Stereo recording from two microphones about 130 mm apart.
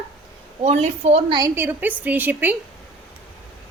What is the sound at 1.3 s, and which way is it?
Speech, 30° right (ahead or behind).